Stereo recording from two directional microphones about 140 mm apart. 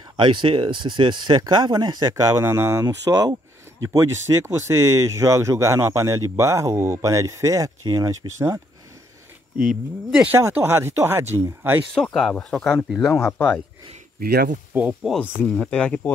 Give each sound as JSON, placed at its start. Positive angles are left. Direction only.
{"t": 0.2, "sound": "speech", "side_deg": -35}
{"t": 2.4, "sound": "speech", "side_deg": -15}
{"t": 2.8, "sound": "speech", "side_deg": -30}
{"t": 9.6, "sound": "speech", "side_deg": -5}
{"t": 11.9, "sound": "speech", "side_deg": 0}
{"t": 13.1, "sound": "speech", "side_deg": 15}
{"t": 14.2, "sound": "speech", "side_deg": -90}
{"t": 14.7, "sound": "speech", "side_deg": -10}
{"t": 15.2, "sound": "speech", "side_deg": 10}